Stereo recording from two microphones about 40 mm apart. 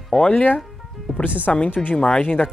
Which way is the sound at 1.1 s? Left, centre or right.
Centre.